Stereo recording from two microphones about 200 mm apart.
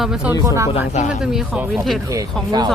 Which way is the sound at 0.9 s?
35° left (ahead or behind).